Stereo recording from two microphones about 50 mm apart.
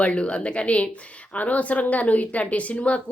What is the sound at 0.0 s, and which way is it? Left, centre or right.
Speech, left.